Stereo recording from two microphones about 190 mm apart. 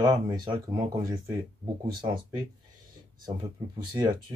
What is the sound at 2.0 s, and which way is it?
Speech, 25° right (ahead or behind).